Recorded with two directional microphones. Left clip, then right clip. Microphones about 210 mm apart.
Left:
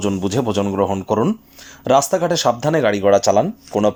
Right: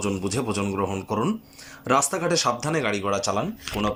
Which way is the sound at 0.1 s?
30° left (ahead or behind).